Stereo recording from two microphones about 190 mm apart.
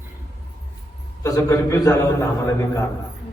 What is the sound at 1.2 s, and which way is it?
A man's voice, 15° left (ahead or behind).